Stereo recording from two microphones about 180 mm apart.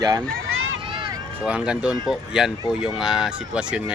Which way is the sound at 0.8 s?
30° right (ahead or behind).